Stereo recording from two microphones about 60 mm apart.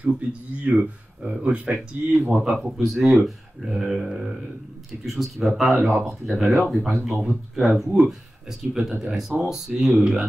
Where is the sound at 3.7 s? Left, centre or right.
Centre.